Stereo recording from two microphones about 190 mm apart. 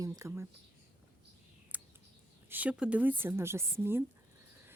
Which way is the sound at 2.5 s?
5° right (ahead or behind).